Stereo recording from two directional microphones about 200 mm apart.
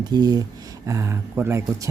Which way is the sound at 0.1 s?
20° right (ahead or behind).